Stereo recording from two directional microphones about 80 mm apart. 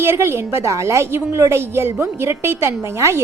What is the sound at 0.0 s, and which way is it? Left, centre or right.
A woman's voice, right.